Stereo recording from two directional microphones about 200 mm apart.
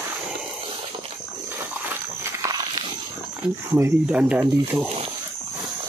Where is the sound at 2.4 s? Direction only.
20° right (ahead or behind).